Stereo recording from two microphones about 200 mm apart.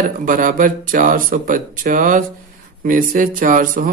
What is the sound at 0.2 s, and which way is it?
Speech, 45° right (ahead or behind).